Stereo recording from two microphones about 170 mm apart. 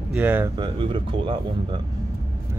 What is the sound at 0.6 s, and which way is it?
Speech, 30° right (ahead or behind).